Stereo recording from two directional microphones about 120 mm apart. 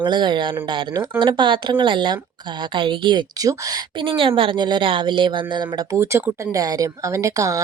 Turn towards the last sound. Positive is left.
turn(degrees=-25)  # may be behind; listen again after turning